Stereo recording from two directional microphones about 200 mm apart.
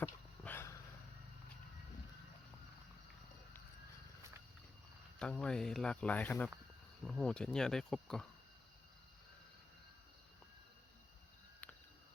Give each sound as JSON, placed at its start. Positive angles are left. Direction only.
{"t": 0.0, "sound": "a sound", "side_deg": 10}
{"t": 5.2, "sound": "speech", "side_deg": 5}
{"t": 11.6, "sound": "cricket", "side_deg": 5}